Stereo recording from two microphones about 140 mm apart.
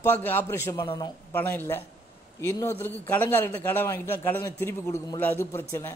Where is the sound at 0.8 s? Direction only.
35° left (ahead or behind).